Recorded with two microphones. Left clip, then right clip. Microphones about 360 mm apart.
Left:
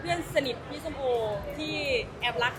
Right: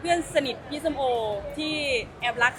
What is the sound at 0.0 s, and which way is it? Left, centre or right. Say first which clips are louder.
Speech: right 4 dB; right.